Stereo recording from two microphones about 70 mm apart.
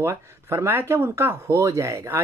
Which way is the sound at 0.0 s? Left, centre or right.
Right.